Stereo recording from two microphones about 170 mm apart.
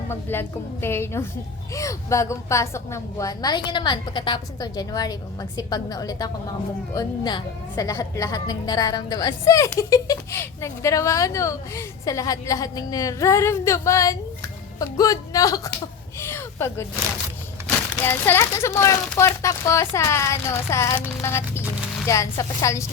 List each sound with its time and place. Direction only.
0.1 s speech: 15° left (ahead or behind)
16.2 s a sound: 15° left (ahead or behind)
18.0 s speech: 15° left (ahead or behind)